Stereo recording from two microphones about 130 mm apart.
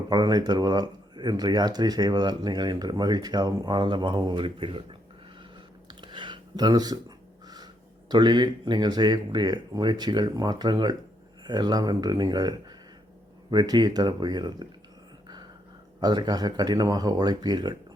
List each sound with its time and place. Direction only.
0.1 s speech: 30° right (ahead or behind)
6.0 s a sound: 35° right (ahead or behind)
8.1 s speech: 35° right (ahead or behind)
16.0 s speech: 30° right (ahead or behind)